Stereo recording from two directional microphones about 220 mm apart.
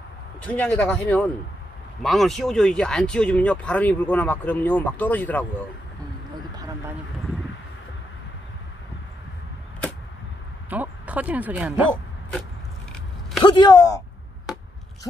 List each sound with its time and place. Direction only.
0.4 s speech: 5° left (ahead or behind)
10.7 s speech: 5° right (ahead or behind)
13.4 s speech: 20° left (ahead or behind)